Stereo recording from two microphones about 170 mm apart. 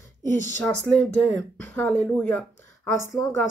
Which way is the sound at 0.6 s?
10° left (ahead or behind).